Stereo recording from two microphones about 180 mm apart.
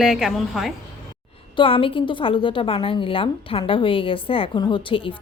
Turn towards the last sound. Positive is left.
turn(degrees=25)  # may be behind; listen again after turning